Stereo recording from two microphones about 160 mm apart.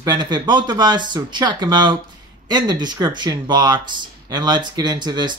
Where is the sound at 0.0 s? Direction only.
25° right (ahead or behind).